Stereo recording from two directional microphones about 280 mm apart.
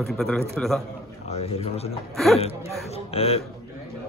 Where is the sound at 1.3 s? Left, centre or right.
Left.